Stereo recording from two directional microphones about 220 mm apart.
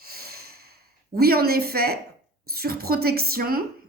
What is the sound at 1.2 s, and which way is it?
A woman's voice, 45° right (ahead or behind).